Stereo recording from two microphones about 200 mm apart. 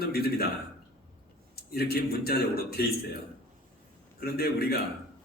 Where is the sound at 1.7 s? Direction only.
50° left (ahead or behind).